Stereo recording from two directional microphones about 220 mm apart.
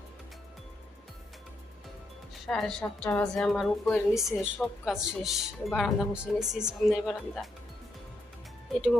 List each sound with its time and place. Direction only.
2.5 s speech: centre (ahead or behind)